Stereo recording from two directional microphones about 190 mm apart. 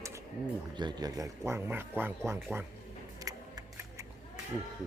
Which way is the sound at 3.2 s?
15° right (ahead or behind).